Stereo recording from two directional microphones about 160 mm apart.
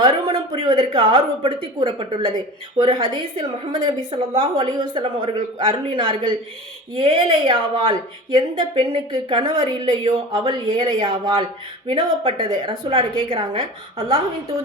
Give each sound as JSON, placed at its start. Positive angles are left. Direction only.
{"t": 0.0, "sound": "speech", "side_deg": -35}